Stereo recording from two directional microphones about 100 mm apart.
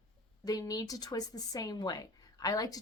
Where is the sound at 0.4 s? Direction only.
40° left (ahead or behind).